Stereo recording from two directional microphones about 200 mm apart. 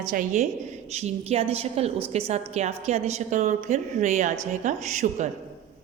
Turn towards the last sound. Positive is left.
turn(degrees=-35)  # may be behind; listen again after turning